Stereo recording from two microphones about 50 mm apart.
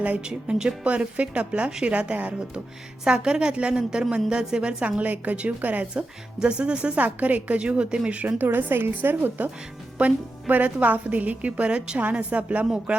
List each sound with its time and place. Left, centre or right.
0.3 s a woman's voice: centre
5.9 s a woman's voice: centre
8.4 s a woman's voice: right
10.5 s a woman's voice: right